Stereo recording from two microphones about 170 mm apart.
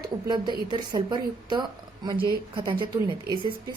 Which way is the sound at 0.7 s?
25° right (ahead or behind).